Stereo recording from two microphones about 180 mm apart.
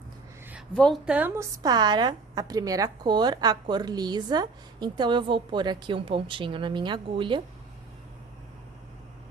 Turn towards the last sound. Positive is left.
turn(degrees=-25)  # may be behind; listen again after turning